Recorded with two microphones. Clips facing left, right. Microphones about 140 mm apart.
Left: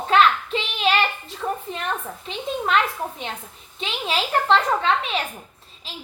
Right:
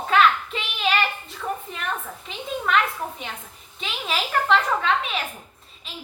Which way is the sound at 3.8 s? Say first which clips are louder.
Left 3 dB; 25° left (ahead or behind).